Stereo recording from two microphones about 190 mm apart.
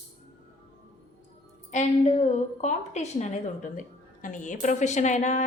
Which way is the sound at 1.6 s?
40° left (ahead or behind).